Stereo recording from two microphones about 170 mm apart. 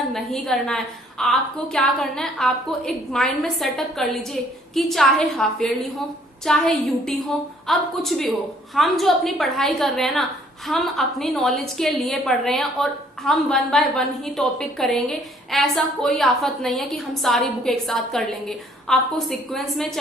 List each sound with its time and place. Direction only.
0.1 s a woman's voice: centre (ahead or behind)